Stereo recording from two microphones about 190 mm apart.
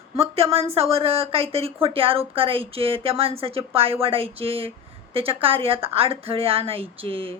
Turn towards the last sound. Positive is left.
turn(degrees=-30)  # may be behind; listen again after turning